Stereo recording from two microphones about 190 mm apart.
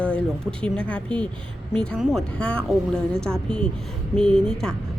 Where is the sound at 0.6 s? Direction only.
5° left (ahead or behind).